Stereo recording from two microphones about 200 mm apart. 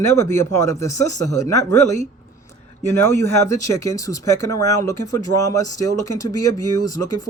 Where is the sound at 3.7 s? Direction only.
15° left (ahead or behind).